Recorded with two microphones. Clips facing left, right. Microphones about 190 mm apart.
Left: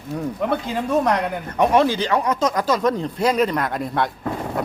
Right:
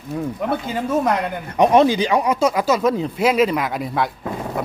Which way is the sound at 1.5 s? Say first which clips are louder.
Right 3 dB; 20° right (ahead or behind).